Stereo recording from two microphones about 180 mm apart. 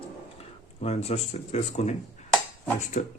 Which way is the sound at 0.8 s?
35° left (ahead or behind).